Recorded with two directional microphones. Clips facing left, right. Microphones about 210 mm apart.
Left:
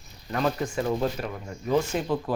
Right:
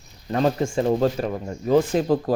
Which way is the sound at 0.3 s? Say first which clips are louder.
Right 5 dB; 30° right (ahead or behind).